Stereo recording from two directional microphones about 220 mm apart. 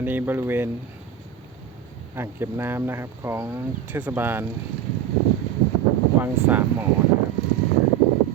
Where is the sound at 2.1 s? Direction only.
10° right (ahead or behind).